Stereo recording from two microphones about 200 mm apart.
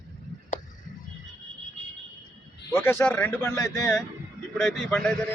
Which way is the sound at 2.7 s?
10° left (ahead or behind).